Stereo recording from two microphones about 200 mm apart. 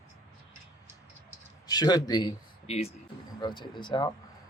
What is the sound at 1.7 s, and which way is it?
A man's voice, 20° left (ahead or behind).